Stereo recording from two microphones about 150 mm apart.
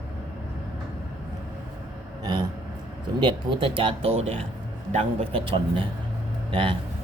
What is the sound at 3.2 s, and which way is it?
Speech, 35° right (ahead or behind).